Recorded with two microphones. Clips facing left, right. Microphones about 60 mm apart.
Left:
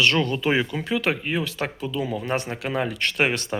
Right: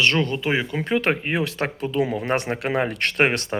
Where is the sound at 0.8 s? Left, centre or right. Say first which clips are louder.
Right 2 dB; right.